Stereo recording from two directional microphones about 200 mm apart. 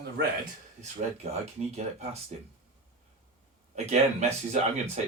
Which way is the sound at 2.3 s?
35° right (ahead or behind).